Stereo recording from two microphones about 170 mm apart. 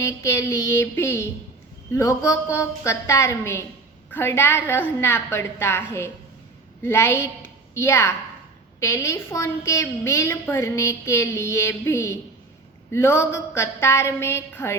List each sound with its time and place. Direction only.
0.0 s a woman's voice: 15° left (ahead or behind)